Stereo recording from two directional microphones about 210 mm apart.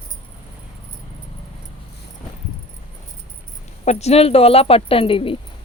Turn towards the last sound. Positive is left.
turn(degrees=25)  # may be behind; listen again after turning